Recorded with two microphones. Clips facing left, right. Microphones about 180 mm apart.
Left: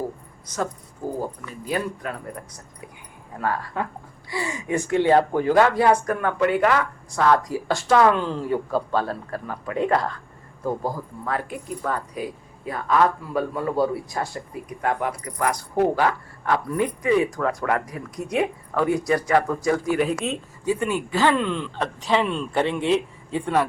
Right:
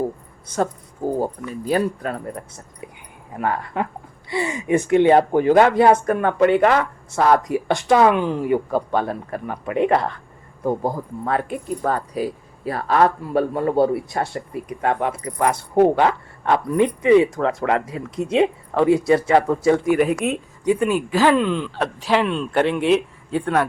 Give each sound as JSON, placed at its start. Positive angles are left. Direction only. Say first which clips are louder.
{"t": 1.2, "sound": "speech", "louder": "right 6 dB", "side_deg": -35}
{"t": 3.3, "sound": "speech", "louder": "right 3 dB", "side_deg": -20}
{"t": 11.8, "sound": "speech", "louder": "right 5 dB", "side_deg": -35}
{"t": 20.1, "sound": "speech", "louder": "right 4 dB", "side_deg": -10}